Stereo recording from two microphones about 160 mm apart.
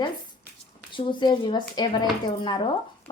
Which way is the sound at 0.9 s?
30° left (ahead or behind).